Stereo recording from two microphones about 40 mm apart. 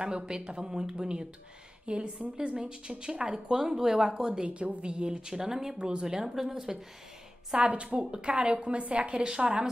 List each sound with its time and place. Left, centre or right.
0.0 s speech: right
7.5 s speech: right